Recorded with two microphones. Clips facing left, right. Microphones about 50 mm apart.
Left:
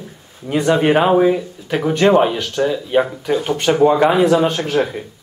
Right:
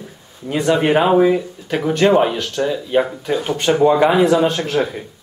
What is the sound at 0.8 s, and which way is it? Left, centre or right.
Speech, centre.